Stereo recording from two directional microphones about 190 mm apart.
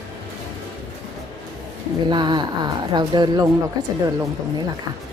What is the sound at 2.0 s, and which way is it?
Speech, 25° right (ahead or behind).